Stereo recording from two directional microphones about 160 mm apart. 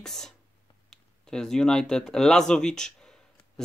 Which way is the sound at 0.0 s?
5° left (ahead or behind).